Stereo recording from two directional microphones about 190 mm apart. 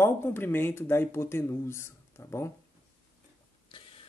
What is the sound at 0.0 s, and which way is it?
Speech, 10° left (ahead or behind).